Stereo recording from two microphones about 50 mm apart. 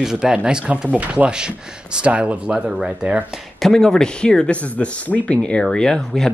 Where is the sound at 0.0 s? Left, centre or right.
Centre.